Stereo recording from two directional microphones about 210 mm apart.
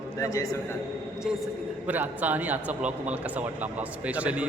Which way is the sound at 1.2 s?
Centre (ahead or behind).